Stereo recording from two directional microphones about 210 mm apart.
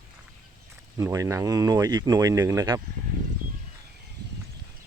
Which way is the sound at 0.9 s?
15° right (ahead or behind).